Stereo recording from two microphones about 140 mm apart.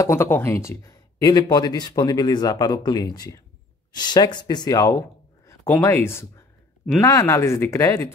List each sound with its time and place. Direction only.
0.0 s speech: 15° left (ahead or behind)